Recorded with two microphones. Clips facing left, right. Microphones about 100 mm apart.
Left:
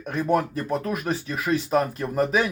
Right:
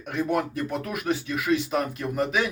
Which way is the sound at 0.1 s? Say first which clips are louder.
Left 3 dB; 35° left (ahead or behind).